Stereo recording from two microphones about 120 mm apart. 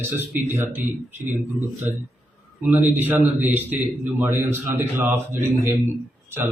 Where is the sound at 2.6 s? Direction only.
15° right (ahead or behind).